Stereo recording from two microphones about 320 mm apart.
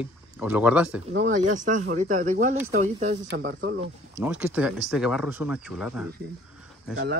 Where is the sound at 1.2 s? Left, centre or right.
Right.